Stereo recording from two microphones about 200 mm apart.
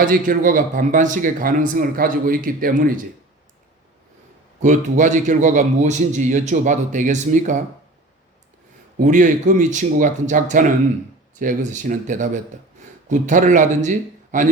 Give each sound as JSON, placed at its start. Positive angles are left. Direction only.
{"t": 0.0, "sound": "a man's voice", "side_deg": -40}
{"t": 4.6, "sound": "a man's voice", "side_deg": -40}
{"t": 9.0, "sound": "a man's voice", "side_deg": -40}